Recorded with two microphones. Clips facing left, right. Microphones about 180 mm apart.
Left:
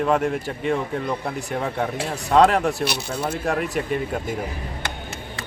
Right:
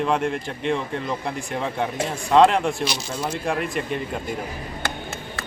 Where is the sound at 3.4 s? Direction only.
Centre (ahead or behind).